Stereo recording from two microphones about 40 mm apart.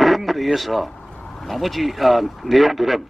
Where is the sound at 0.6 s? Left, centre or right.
Centre.